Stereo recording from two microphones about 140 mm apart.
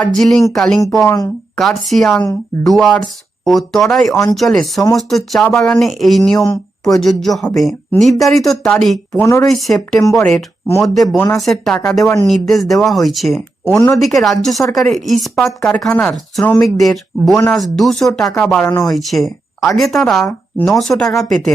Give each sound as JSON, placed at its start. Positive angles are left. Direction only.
{"t": 0.0, "sound": "speech", "side_deg": 5}
{"t": 1.5, "sound": "speech", "side_deg": 0}
{"t": 4.1, "sound": "speech", "side_deg": 25}
{"t": 4.4, "sound": "speech", "side_deg": 0}
{"t": 6.3, "sound": "speech", "side_deg": 25}
{"t": 6.8, "sound": "speech", "side_deg": 0}
{"t": 9.2, "sound": "speech", "side_deg": 20}
{"t": 9.5, "sound": "speech", "side_deg": 0}
{"t": 13.7, "sound": "speech", "side_deg": 20}
{"t": 14.0, "sound": "speech", "side_deg": 0}
{"t": 16.4, "sound": "speech", "side_deg": 20}
{"t": 16.6, "sound": "speech", "side_deg": 0}
{"t": 18.9, "sound": "speech", "side_deg": 0}